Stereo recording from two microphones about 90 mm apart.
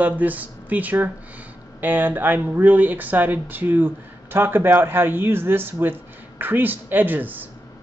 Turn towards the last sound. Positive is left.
turn(degrees=-20)  # may be behind; listen again after turning